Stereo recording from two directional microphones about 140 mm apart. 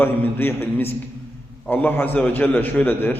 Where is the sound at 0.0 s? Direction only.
15° left (ahead or behind).